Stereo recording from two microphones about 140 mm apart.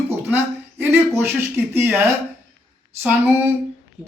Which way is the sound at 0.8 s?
15° right (ahead or behind).